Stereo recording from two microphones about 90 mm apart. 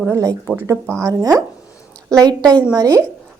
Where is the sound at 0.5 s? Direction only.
30° right (ahead or behind).